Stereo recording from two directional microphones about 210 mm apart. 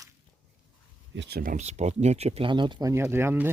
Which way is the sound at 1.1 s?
55° right (ahead or behind).